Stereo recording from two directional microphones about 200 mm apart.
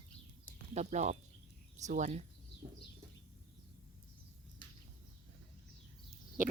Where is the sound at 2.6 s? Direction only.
25° right (ahead or behind).